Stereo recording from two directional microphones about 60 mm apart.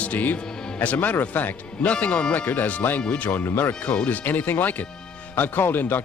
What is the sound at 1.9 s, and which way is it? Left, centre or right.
Speech, centre.